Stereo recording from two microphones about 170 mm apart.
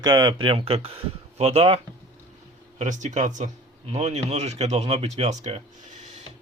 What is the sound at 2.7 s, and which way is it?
Speech, 45° right (ahead or behind).